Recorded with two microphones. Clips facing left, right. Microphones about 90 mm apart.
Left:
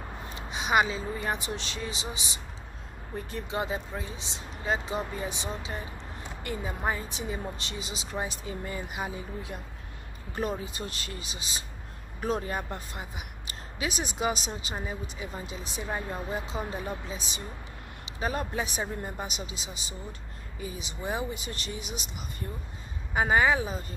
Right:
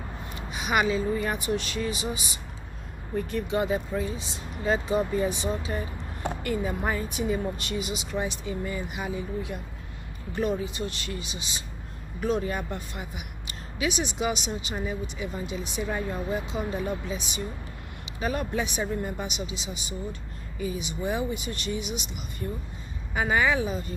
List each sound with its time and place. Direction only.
0.5 s speech: 25° left (ahead or behind)
6.2 s a sound: 65° right (ahead or behind)
6.8 s a woman's voice: 15° left (ahead or behind)
7.1 s a woman's voice: 25° left (ahead or behind)